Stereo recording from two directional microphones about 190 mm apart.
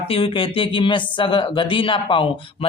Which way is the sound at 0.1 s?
30° left (ahead or behind).